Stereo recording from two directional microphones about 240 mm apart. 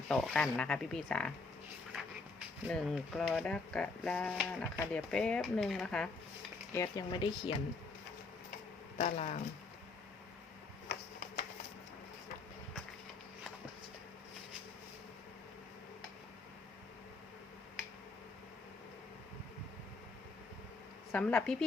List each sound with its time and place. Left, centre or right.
0.1 s speech: centre
2.6 s speech: centre
6.7 s speech: centre
9.0 s speech: left
21.1 s speech: centre